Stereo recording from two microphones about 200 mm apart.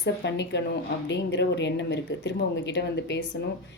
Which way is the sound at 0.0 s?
60° left (ahead or behind).